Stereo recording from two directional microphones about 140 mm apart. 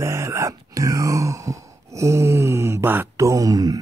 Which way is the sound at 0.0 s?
20° right (ahead or behind).